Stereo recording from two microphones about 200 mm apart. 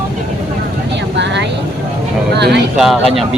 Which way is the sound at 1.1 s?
60° right (ahead or behind).